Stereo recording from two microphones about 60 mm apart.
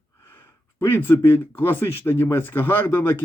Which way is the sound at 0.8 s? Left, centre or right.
Left.